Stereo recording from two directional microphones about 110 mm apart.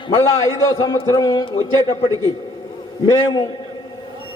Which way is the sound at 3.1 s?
40° left (ahead or behind).